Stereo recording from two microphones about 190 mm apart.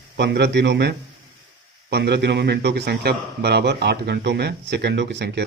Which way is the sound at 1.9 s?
60° right (ahead or behind).